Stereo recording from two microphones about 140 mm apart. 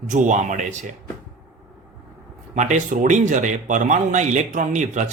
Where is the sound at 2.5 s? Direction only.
60° right (ahead or behind).